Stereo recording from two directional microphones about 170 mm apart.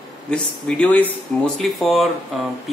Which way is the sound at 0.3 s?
5° left (ahead or behind).